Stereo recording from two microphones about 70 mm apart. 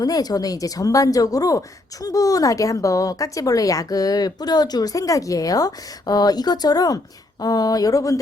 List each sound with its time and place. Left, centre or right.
0.0 s speech: left